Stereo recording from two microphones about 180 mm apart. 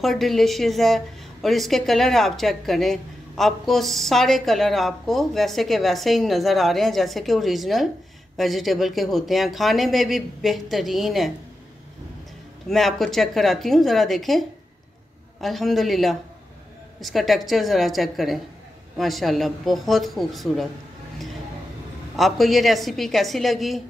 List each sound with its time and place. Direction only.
0.0 s a woman's voice: centre (ahead or behind)
12.6 s a woman's voice: centre (ahead or behind)
15.4 s a woman's voice: centre (ahead or behind)
22.1 s a woman's voice: centre (ahead or behind)